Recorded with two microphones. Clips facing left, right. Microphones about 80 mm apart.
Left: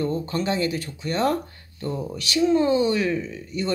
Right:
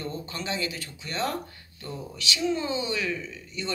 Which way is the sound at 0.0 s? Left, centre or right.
Left.